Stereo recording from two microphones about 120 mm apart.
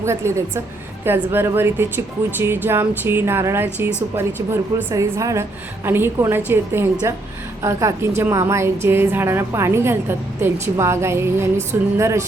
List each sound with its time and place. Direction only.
0.0 s a woman's voice: 25° right (ahead or behind)